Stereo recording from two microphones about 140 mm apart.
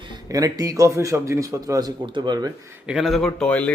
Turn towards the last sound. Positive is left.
turn(degrees=10)  # may be behind; listen again after turning